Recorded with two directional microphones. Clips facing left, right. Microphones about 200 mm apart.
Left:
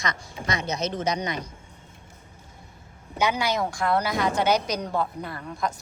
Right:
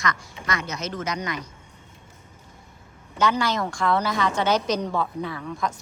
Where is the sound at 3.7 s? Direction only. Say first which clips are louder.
Right 1 dB; 5° left (ahead or behind).